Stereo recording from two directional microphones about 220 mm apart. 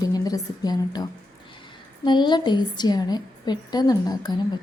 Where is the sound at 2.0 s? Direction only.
20° left (ahead or behind).